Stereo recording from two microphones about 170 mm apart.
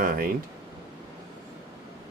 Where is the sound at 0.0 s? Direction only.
55° right (ahead or behind).